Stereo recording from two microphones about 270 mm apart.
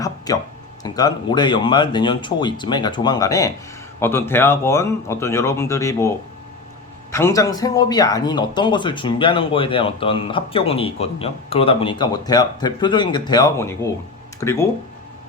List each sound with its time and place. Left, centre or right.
0.3 s speech: centre
7.1 s speech: centre